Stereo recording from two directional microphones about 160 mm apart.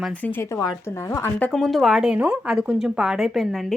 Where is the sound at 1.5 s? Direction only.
Centre (ahead or behind).